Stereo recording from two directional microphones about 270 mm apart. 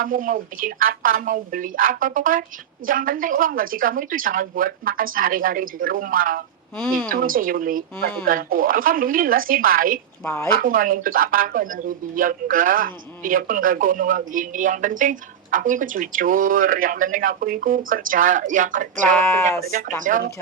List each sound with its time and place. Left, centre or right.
0.0 s speech: right
6.7 s speech: centre
7.1 s speech: right
10.2 s speech: centre
10.5 s speech: right
19.3 s speech: centre
19.7 s speech: right